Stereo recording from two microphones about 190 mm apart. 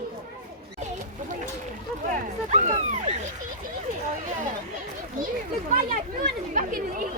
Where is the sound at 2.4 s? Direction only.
35° right (ahead or behind).